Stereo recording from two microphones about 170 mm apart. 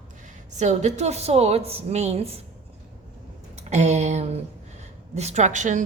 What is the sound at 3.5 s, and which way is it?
A woman's voice, 40° right (ahead or behind).